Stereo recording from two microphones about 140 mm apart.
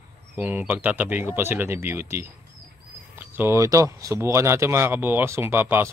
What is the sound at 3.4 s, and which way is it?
Speech, 20° right (ahead or behind).